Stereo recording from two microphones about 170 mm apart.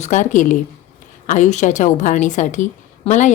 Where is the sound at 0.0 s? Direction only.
45° left (ahead or behind).